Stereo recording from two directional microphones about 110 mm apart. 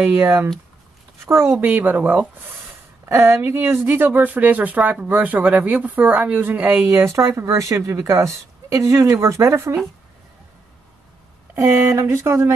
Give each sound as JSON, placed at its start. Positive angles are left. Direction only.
{"t": 0.0, "sound": "speech", "side_deg": -20}
{"t": 3.1, "sound": "speech", "side_deg": -25}
{"t": 6.9, "sound": "speech", "side_deg": -25}
{"t": 11.5, "sound": "speech", "side_deg": -25}